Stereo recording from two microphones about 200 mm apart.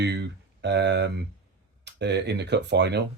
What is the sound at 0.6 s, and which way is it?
Speech, 60° right (ahead or behind).